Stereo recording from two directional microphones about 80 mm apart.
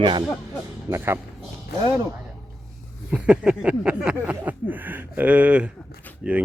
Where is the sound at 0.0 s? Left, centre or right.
Right.